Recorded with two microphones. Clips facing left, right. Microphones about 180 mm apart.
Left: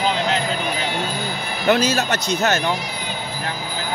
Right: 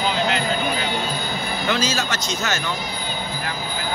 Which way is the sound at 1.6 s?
60° left (ahead or behind).